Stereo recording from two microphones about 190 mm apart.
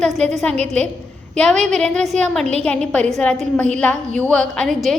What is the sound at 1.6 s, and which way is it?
A woman's voice, centre (ahead or behind).